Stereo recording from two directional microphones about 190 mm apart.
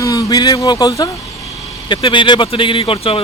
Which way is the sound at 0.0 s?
15° left (ahead or behind).